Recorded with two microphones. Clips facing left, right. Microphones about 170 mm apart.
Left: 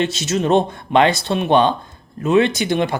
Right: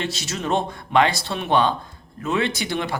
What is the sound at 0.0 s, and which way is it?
Speech, 20° left (ahead or behind).